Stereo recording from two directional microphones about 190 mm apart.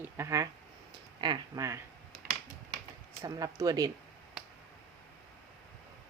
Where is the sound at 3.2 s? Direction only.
20° right (ahead or behind).